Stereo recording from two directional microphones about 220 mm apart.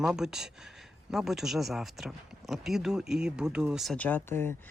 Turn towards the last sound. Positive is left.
turn(degrees=10)  # may be behind; listen again after turning